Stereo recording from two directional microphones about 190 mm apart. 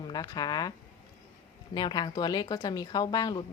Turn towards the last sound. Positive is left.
turn(degrees=20)  # may be behind; listen again after turning